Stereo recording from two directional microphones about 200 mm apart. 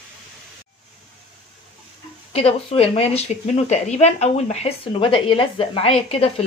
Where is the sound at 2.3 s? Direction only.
30° left (ahead or behind).